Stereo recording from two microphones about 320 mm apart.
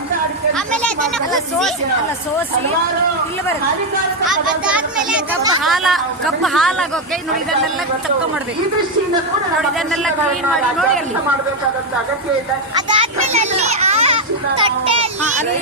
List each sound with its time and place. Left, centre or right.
0.5 s speech: centre
4.3 s a woman's voice: centre
9.6 s a woman's voice: centre
12.9 s children playing: centre
14.6 s a child's voice: centre